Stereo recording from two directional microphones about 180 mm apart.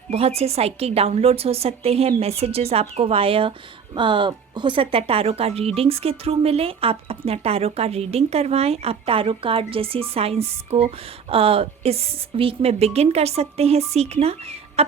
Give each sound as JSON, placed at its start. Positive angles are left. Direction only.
{"t": 0.1, "sound": "speech", "side_deg": -35}